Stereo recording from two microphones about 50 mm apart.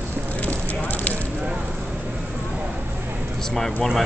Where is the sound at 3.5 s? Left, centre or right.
Centre.